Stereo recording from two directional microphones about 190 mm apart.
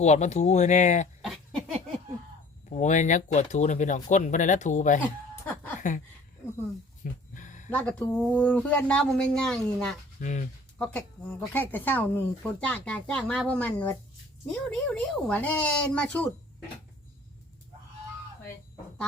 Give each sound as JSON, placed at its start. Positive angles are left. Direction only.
{"t": 0.0, "sound": "speech", "side_deg": 35}
{"t": 1.2, "sound": "a sound", "side_deg": 0}
{"t": 2.6, "sound": "speech", "side_deg": 40}
{"t": 7.0, "sound": "a sound", "side_deg": 40}
{"t": 7.7, "sound": "speech", "side_deg": 5}
{"t": 10.2, "sound": "speech", "side_deg": 40}
{"t": 10.8, "sound": "speech", "side_deg": 10}